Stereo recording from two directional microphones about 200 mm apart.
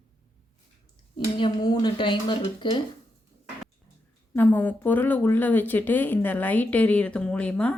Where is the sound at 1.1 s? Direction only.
20° left (ahead or behind).